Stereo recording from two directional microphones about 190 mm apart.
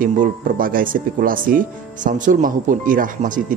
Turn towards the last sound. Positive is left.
turn(degrees=-45)  # may be behind; listen again after turning